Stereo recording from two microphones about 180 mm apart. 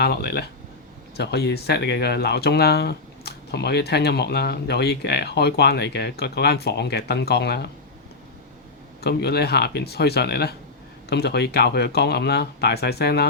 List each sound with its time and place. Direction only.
0.0 s speech: 65° left (ahead or behind)
9.0 s speech: 65° left (ahead or behind)